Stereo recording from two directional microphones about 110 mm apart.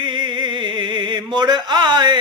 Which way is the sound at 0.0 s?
45° right (ahead or behind).